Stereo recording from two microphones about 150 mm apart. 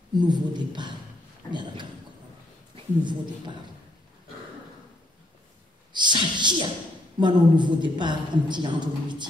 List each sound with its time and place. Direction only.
0.2 s a woman's voice: 30° right (ahead or behind)
5.9 s a woman's voice: 30° right (ahead or behind)